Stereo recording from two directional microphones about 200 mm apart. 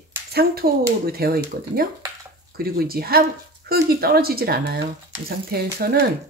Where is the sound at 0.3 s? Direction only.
50° right (ahead or behind).